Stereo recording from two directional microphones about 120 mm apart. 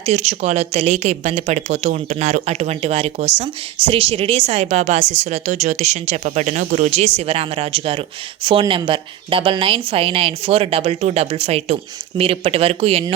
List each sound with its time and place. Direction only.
0.0 s a woman's voice: 65° right (ahead or behind)